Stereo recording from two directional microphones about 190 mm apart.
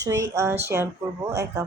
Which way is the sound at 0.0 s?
15° right (ahead or behind).